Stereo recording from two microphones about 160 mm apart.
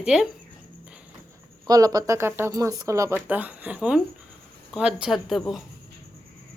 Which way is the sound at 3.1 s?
10° right (ahead or behind).